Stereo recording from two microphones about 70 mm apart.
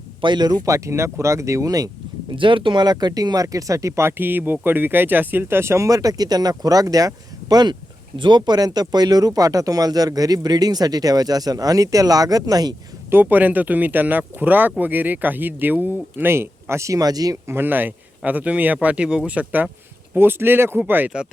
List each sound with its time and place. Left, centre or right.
0.3 s speech: right
0.6 s speech: right
2.7 s speech: right
4.2 s speech: right
13.1 s speech: right
17.5 s speech: right